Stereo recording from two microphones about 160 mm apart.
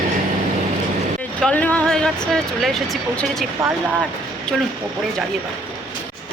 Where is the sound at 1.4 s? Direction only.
10° left (ahead or behind).